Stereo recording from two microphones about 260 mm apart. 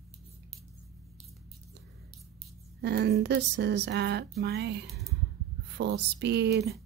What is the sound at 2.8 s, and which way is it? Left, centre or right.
Speech, right.